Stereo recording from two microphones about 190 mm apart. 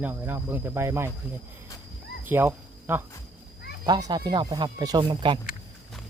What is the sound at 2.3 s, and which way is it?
Cricket, 10° right (ahead or behind).